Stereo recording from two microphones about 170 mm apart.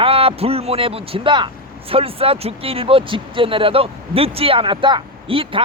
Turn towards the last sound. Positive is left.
turn(degrees=-30)  # may be behind; listen again after turning